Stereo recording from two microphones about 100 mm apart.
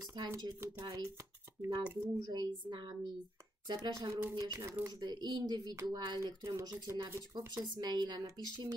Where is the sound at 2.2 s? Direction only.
45° right (ahead or behind).